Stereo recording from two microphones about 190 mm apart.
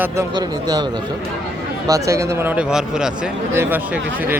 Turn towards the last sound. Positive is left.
turn(degrees=-10)  # may be behind; listen again after turning